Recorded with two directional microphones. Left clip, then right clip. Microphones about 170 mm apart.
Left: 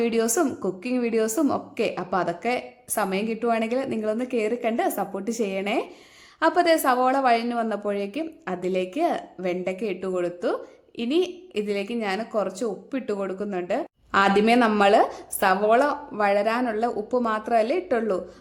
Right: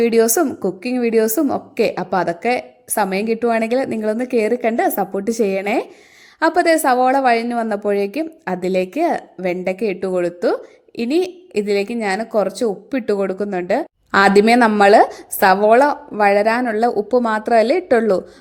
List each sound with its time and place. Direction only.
0.0 s a woman's voice: 25° right (ahead or behind)